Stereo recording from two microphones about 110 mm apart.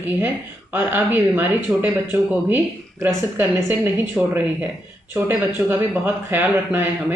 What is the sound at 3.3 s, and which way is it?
Speech, 20° right (ahead or behind).